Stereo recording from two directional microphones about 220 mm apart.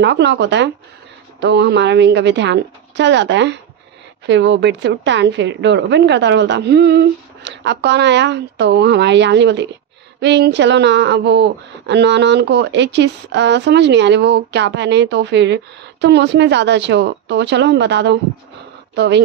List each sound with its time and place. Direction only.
0.0 s speech: 55° right (ahead or behind)